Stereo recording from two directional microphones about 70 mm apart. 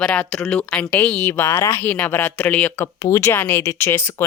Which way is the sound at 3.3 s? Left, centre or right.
Left.